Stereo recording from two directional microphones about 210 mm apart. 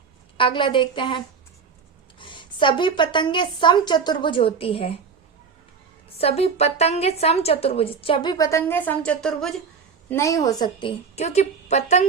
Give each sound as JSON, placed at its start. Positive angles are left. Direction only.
{"t": 0.3, "sound": "a woman's voice", "side_deg": 25}
{"t": 6.1, "sound": "a woman's voice", "side_deg": 30}
{"t": 10.1, "sound": "a woman's voice", "side_deg": 15}